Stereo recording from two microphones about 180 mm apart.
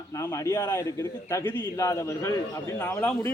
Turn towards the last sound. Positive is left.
turn(degrees=15)  # may be behind; listen again after turning